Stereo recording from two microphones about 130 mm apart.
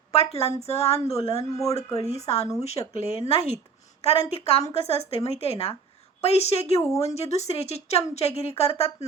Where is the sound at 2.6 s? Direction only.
55° left (ahead or behind).